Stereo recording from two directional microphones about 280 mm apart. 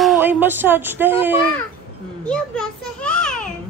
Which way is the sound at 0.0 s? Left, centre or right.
Centre.